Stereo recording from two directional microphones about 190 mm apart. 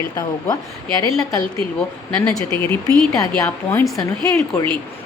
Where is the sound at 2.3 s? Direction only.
20° left (ahead or behind).